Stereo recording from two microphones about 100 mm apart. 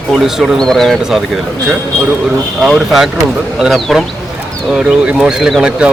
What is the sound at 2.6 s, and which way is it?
Speech, 5° right (ahead or behind).